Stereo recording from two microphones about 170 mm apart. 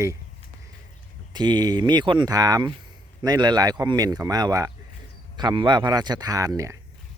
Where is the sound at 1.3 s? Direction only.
25° right (ahead or behind).